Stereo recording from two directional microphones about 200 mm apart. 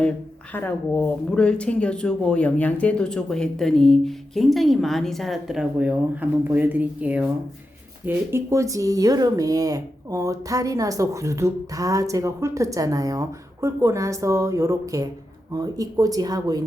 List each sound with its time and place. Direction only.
0.5 s speech: 10° left (ahead or behind); by 16.6 s 20° right (ahead or behind)